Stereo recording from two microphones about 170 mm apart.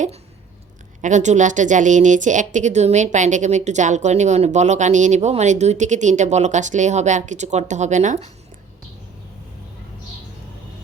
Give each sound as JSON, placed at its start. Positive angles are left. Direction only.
{"t": 1.0, "sound": "a woman's voice", "side_deg": -45}